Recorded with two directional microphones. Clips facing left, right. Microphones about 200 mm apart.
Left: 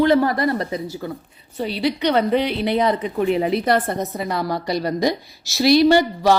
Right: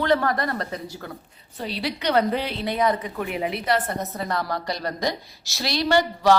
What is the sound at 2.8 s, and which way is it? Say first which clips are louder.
Speech: left 1 dB; 25° left (ahead or behind).